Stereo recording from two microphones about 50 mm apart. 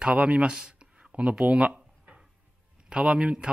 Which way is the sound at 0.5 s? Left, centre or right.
Centre.